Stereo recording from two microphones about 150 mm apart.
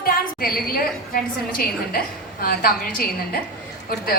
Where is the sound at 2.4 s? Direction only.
80° left.